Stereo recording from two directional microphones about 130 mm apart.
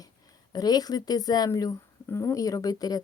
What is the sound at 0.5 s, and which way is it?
Speech, 30° left (ahead or behind).